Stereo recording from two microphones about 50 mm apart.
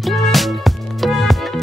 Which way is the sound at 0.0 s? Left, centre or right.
Centre.